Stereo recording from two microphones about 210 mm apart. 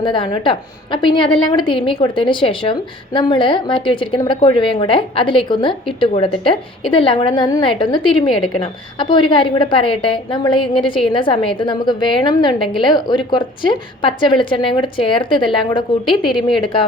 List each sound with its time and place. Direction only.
0.0 s a woman's voice: 25° left (ahead or behind)
16.2 s a woman's voice: centre (ahead or behind)